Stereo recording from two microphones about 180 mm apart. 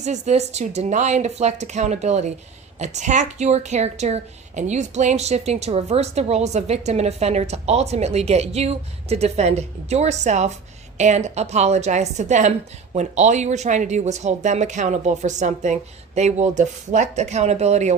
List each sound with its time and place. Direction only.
0.0 s a woman's voice: 40° right (ahead or behind)